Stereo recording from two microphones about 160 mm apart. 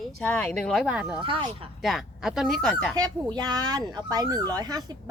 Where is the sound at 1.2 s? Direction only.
30° right (ahead or behind).